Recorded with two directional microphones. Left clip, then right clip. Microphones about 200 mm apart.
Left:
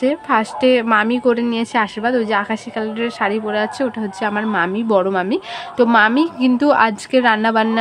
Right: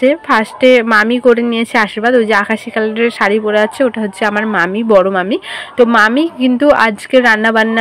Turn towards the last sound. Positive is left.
turn(degrees=-15)  # may be behind; listen again after turning